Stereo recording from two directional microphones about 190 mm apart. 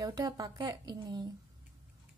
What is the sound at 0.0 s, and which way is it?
Speech, 20° right (ahead or behind).